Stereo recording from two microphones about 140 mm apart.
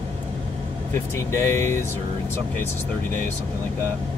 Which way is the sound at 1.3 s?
20° left (ahead or behind).